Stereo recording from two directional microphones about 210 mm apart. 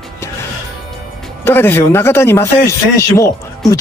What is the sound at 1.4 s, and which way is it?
Speech, 10° left (ahead or behind).